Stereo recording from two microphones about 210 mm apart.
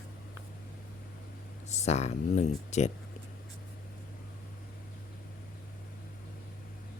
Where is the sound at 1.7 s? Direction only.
30° left (ahead or behind).